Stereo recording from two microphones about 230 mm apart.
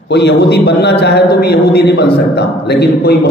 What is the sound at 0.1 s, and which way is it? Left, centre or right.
A man's voice, left.